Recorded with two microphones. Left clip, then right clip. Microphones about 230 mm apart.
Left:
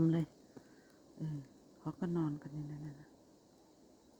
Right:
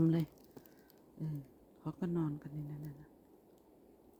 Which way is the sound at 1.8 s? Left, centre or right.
Centre.